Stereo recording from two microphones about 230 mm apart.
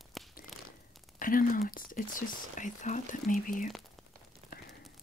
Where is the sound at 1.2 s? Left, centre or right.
Left.